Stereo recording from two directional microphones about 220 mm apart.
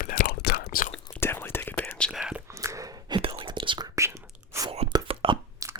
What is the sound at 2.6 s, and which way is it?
Whispering, 15° right (ahead or behind).